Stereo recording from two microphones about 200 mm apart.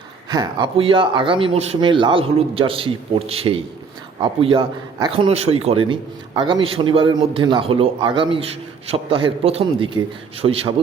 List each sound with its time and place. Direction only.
0.3 s a man's voice: 25° right (ahead or behind)